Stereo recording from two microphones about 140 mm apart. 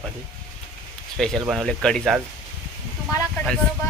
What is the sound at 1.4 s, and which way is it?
Speech, 5° right (ahead or behind).